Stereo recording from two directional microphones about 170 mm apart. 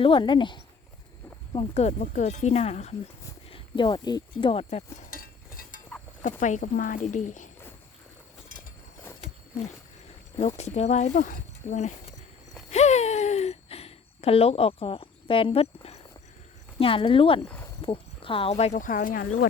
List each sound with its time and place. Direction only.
0.0 s speech: 30° left (ahead or behind)
1.5 s speech: 40° left (ahead or behind)
3.5 s speech: 30° left (ahead or behind)
5.1 s a sound: 55° left (ahead or behind)
6.4 s speech: 50° left (ahead or behind)
10.3 s speech: 40° left (ahead or behind)
17.4 s speech: 10° left (ahead or behind)
17.8 s speech: 30° left (ahead or behind); by 19.5 s 55° left (ahead or behind)